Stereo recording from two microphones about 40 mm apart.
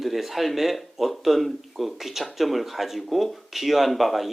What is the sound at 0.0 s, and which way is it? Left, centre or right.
Speech, centre.